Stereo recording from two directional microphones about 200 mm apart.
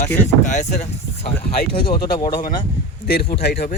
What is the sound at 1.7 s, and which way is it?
Speech, 25° left (ahead or behind).